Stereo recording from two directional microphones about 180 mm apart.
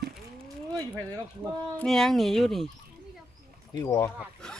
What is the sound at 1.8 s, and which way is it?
Speech, centre (ahead or behind).